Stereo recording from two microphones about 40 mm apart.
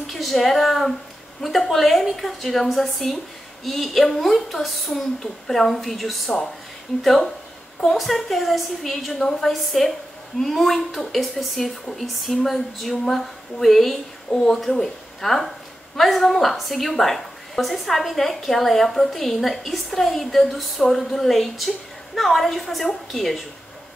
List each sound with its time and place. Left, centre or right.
0.0 s a woman's voice: centre
12.9 s a woman's voice: centre
14.3 s a woman's voice: centre